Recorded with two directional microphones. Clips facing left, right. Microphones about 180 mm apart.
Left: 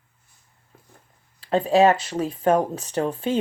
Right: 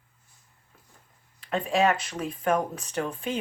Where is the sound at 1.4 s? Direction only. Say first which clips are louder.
Left 7 dB; 30° left (ahead or behind).